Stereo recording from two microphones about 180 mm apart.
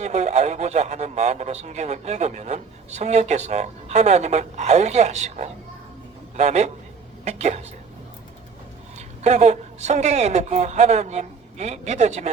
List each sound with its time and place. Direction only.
0.0 s speech: 40° right (ahead or behind)
9.0 s speech: 40° right (ahead or behind)